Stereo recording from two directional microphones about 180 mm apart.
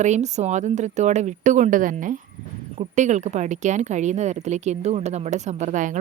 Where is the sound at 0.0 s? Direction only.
40° right (ahead or behind).